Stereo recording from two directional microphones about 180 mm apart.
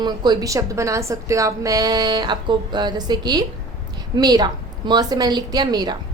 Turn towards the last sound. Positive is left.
turn(degrees=-20)  # may be behind; listen again after turning